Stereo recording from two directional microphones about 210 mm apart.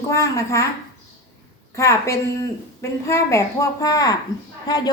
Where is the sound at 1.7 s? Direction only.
15° left (ahead or behind).